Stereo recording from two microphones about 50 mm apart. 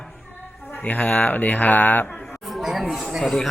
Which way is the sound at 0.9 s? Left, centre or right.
Left.